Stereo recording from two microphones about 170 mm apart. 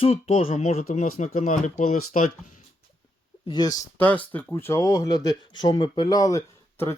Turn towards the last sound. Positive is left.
turn(degrees=15)  # may be behind; listen again after turning